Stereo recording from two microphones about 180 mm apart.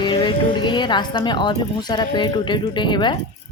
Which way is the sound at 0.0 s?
25° left (ahead or behind).